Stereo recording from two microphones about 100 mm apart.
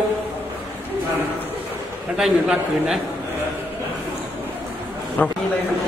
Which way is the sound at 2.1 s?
5° right (ahead or behind).